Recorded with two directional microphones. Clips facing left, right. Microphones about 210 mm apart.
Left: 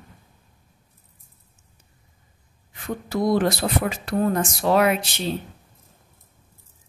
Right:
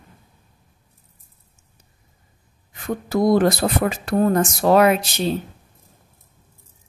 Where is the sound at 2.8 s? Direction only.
45° right (ahead or behind).